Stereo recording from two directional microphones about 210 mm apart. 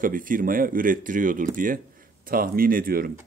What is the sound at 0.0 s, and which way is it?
Speech, 40° right (ahead or behind).